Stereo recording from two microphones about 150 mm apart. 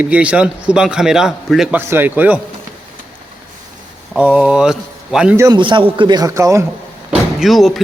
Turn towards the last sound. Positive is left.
turn(degrees=0)  # may be behind; listen again after turning